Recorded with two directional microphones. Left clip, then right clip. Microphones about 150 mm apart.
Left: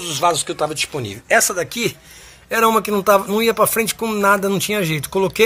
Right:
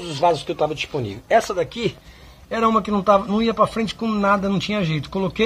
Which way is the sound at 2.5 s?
25° left (ahead or behind).